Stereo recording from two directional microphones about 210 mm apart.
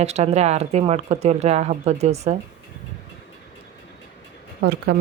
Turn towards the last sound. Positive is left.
turn(degrees=-50)  # may be behind; listen again after turning